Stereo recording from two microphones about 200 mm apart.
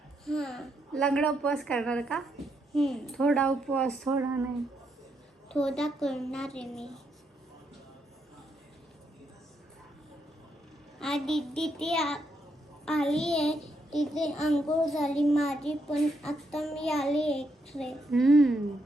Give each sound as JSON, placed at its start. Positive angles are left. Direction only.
{"t": 0.3, "sound": "child singing", "side_deg": 0}
{"t": 5.5, "sound": "child singing", "side_deg": 5}
{"t": 11.0, "sound": "child singing", "side_deg": 0}